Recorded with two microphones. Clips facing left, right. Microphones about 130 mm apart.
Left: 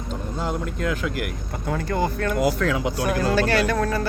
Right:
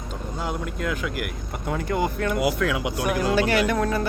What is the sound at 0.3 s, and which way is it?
Speech, 10° right (ahead or behind).